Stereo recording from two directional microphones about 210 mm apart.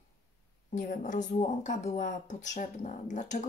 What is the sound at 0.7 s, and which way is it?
A woman's voice, 35° left (ahead or behind).